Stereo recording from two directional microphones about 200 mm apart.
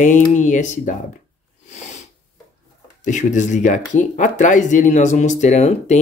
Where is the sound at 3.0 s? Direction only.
40° left (ahead or behind).